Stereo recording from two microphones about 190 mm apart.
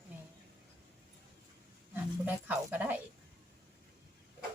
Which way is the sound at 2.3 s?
10° right (ahead or behind).